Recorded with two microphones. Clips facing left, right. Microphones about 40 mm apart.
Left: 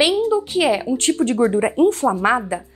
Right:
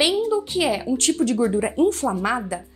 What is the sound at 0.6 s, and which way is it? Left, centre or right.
Speech, left.